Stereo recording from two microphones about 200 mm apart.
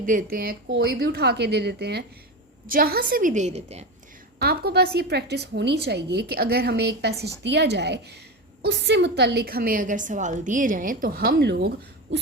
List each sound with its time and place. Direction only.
0.0 s a woman's voice: 40° right (ahead or behind)
4.4 s a woman's voice: 50° right (ahead or behind)